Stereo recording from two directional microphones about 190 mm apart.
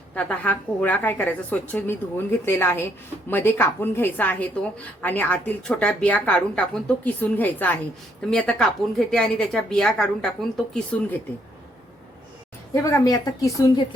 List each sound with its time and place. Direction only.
0.1 s a woman's voice: 5° left (ahead or behind)
12.7 s a woman's voice: 15° left (ahead or behind)